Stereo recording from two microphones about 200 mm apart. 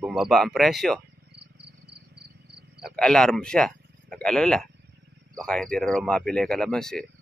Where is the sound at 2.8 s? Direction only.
5° left (ahead or behind).